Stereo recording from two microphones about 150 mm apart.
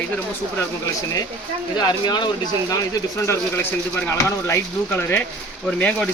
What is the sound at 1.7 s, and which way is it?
Speech, 30° left (ahead or behind).